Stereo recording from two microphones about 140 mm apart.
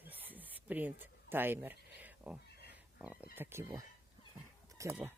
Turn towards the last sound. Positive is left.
turn(degrees=-20)  # may be behind; listen again after turning